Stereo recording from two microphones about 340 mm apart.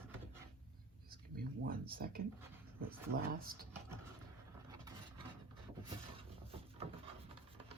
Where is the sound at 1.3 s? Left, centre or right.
Right.